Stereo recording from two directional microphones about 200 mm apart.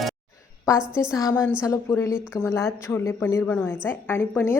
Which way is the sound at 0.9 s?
15° left (ahead or behind).